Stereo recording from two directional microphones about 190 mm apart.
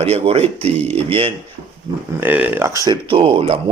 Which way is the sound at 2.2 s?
10° right (ahead or behind).